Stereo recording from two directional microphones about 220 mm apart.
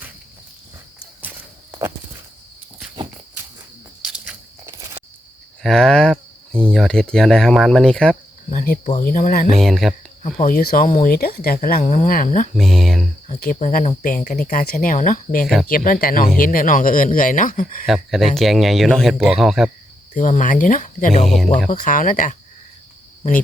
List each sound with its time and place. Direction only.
1.2 s walk: 5° right (ahead or behind)
4.0 s biting: 10° right (ahead or behind)
5.6 s a sound: centre (ahead or behind)
6.7 s speech: centre (ahead or behind)
8.4 s speech: 40° left (ahead or behind)
9.5 s speech: centre (ahead or behind)
10.2 s speech: 35° left (ahead or behind)
12.5 s speech: centre (ahead or behind)
13.4 s speech: 35° left (ahead or behind)
17.8 s speech: centre (ahead or behind)
20.1 s speech: 35° left (ahead or behind)
21.2 s speech: centre (ahead or behind)
21.7 s speech: 35° left (ahead or behind)